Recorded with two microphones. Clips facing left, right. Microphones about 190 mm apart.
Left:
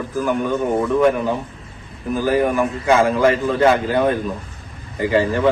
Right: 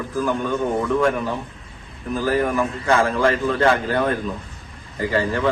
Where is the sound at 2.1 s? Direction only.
15° left (ahead or behind).